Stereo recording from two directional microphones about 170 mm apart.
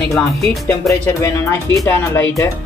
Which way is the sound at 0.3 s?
Centre (ahead or behind).